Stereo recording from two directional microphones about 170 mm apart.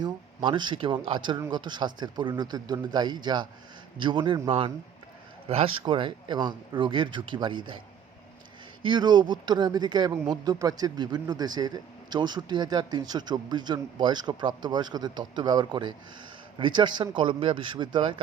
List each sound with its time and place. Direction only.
0.0 s speech: 25° right (ahead or behind)
8.8 s speech: 25° right (ahead or behind)